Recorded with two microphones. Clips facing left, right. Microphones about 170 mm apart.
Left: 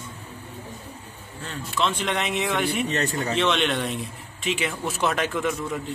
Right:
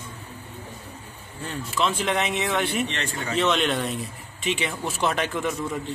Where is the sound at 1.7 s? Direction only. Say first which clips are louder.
Right 1 dB; centre (ahead or behind).